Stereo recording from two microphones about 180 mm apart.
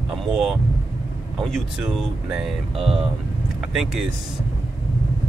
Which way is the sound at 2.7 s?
30° right (ahead or behind).